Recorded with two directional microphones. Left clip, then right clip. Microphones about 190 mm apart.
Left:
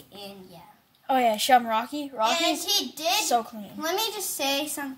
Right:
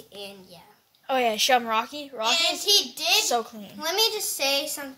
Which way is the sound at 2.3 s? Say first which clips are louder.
Right 3 dB; 30° left (ahead or behind).